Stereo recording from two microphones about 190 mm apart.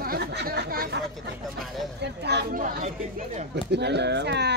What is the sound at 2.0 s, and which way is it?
Chatter, 60° right (ahead or behind).